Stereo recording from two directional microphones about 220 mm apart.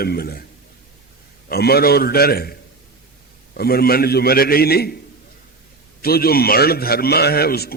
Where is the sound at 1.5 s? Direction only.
45° left (ahead or behind).